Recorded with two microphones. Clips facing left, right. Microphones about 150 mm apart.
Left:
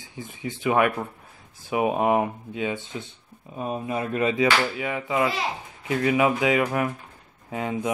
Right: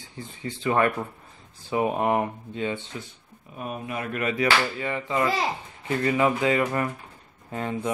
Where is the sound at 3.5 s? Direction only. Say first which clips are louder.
Left 4 dB; 30° left (ahead or behind).